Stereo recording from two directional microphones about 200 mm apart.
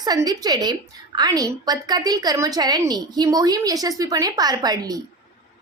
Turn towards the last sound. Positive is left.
turn(degrees=-20)  # may be behind; listen again after turning